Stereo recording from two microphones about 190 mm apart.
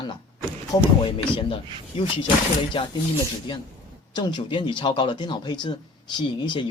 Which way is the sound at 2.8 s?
30° left (ahead or behind).